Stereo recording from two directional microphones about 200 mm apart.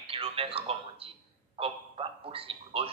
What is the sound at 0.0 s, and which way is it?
A man's voice, 30° right (ahead or behind).